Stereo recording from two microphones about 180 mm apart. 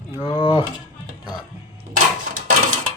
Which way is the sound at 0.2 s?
25° left (ahead or behind).